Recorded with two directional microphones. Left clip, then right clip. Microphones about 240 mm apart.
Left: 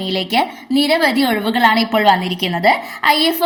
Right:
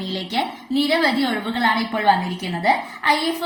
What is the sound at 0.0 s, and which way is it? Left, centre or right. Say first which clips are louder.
A woman's voice: left 7 dB; left.